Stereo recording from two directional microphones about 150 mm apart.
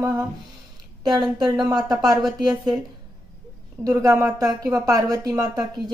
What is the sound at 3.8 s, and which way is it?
Speech, 20° right (ahead or behind).